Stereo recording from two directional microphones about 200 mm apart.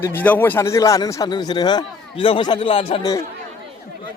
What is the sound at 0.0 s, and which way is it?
Speech, 10° left (ahead or behind).